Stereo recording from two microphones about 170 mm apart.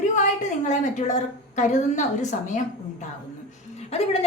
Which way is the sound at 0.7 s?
45° left (ahead or behind).